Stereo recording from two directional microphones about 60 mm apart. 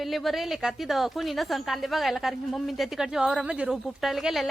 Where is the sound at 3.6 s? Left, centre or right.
Centre.